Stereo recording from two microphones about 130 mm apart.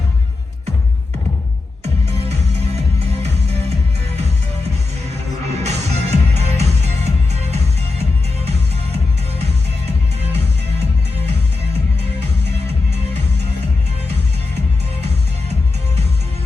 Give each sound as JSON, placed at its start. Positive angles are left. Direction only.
{"t": 1.8, "sound": "music", "side_deg": -55}
{"t": 5.5, "sound": "music", "side_deg": -60}